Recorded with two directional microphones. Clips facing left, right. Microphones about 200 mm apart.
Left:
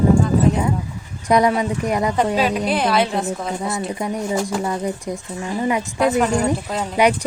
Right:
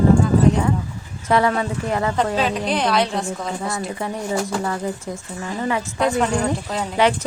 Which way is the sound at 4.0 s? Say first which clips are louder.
Left 2 dB; 15° left (ahead or behind).